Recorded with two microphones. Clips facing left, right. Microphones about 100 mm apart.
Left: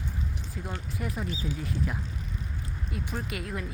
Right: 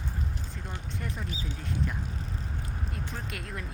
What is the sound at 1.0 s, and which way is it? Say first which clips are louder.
Speech: left 4 dB; 5° left (ahead or behind).